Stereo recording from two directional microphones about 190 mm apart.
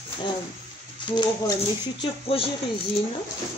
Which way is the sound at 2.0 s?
30° left (ahead or behind).